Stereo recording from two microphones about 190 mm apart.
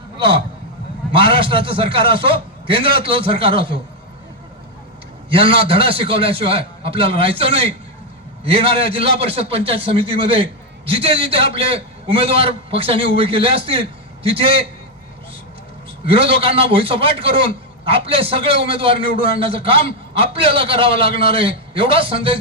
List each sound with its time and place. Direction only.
0.2 s a man's voice: 25° right (ahead or behind)
5.3 s a man's voice: 30° right (ahead or behind)
16.0 s a man's voice: 30° right (ahead or behind)